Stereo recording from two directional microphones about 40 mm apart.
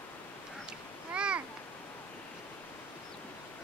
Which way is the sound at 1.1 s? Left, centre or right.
Right.